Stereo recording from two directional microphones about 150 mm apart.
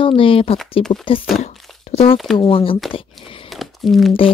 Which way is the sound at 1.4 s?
45° left (ahead or behind).